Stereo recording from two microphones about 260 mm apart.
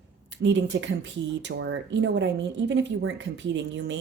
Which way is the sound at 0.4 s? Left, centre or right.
Right.